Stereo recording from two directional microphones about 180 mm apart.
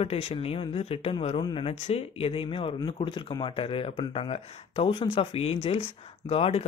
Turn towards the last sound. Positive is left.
turn(degrees=35)  # may be behind; listen again after turning